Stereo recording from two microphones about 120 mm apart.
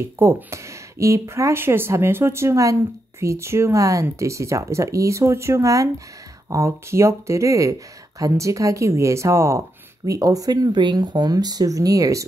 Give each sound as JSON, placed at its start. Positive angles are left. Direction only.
{"t": 0.2, "sound": "speech", "side_deg": -25}